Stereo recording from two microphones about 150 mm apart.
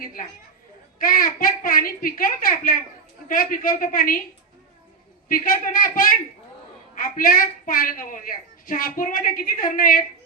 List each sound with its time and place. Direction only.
0.0 s a woman's voice: 70° left (ahead or behind)
5.3 s a woman's voice: 65° left (ahead or behind)